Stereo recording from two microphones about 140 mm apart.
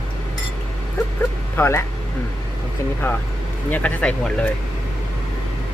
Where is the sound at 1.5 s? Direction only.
15° left (ahead or behind).